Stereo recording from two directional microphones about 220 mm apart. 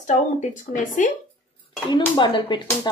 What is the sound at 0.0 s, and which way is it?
Speech, 35° left (ahead or behind).